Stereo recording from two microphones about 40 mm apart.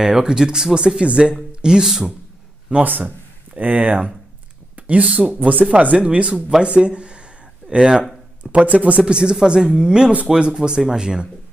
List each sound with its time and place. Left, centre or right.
0.0 s speech: centre
2.8 s speech: right
6.3 s speech: centre
6.7 s a sound: right
8.4 s speech: right
9.0 s speech: right